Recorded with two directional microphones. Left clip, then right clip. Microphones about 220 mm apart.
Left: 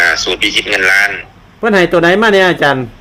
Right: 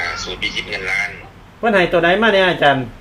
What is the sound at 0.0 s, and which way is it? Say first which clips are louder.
A man's voice: left 11 dB; 45° left (ahead or behind).